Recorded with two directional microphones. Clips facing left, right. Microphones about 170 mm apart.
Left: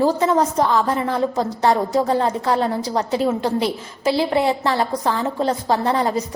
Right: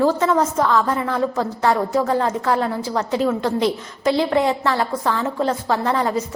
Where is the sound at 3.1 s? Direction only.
15° left (ahead or behind).